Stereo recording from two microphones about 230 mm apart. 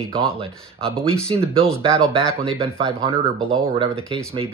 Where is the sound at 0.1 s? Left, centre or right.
Right.